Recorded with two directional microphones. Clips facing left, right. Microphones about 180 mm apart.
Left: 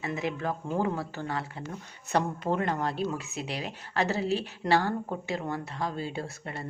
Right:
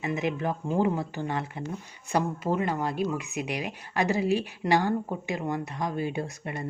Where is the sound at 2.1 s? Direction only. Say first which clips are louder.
Right 1 dB; 5° right (ahead or behind).